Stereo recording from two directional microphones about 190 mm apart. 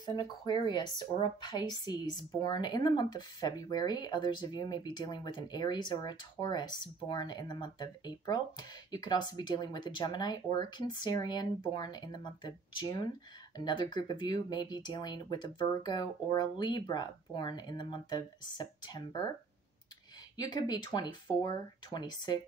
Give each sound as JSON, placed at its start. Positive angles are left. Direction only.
{"t": 0.0, "sound": "speech", "side_deg": 20}
{"t": 20.3, "sound": "speech", "side_deg": 20}